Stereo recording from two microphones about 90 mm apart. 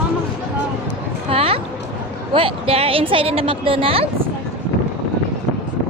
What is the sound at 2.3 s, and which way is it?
Speech, 90° right.